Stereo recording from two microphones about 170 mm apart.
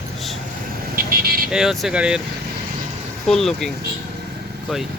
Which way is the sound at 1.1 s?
60° right (ahead or behind).